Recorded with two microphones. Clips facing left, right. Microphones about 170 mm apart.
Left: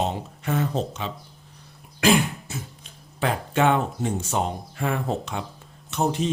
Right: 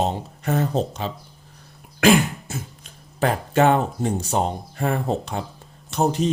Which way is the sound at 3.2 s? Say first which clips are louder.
Right 4 dB; 40° right (ahead or behind).